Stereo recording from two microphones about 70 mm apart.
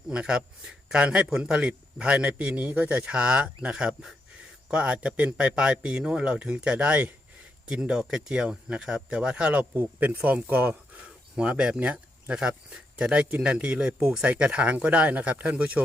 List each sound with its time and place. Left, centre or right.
0.1 s speech: centre